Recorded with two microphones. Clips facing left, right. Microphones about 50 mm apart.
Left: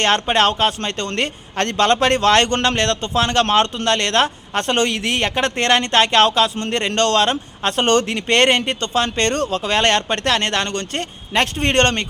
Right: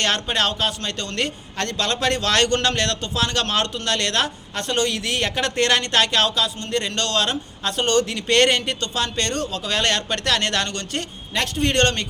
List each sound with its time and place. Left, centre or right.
0.0 s a man's voice: left